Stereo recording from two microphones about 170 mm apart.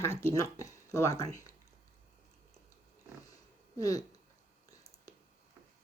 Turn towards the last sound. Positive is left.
turn(degrees=20)  # may be behind; listen again after turning